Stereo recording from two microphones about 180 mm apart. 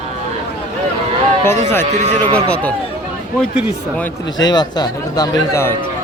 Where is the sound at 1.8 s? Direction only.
40° right (ahead or behind).